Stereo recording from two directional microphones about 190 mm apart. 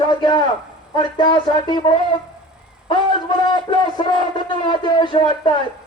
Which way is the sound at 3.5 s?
25° left (ahead or behind).